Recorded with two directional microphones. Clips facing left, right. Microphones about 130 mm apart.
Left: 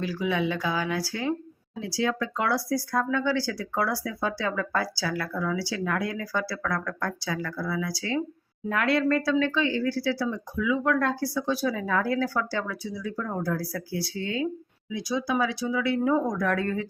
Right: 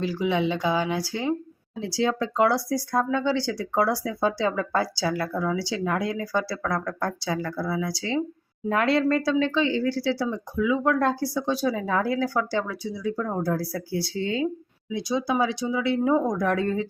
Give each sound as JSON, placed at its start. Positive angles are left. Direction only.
{"t": 0.0, "sound": "speech", "side_deg": -25}